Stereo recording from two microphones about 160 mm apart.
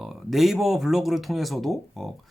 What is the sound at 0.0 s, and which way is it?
Speech, centre (ahead or behind).